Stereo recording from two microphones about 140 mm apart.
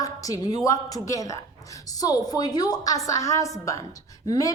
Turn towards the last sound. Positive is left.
turn(degrees=25)  # may be behind; listen again after turning